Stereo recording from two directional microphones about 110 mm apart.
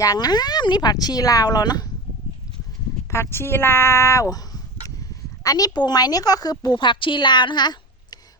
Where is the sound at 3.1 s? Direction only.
25° left (ahead or behind).